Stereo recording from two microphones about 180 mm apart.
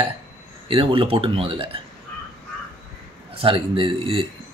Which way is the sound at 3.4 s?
30° right (ahead or behind).